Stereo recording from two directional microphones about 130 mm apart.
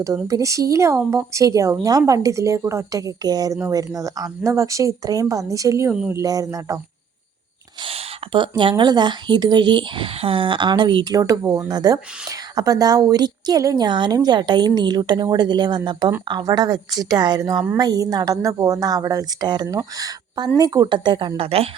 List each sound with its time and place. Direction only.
0.3 s speech: 25° right (ahead or behind)
7.9 s a woman's voice: 40° right (ahead or behind)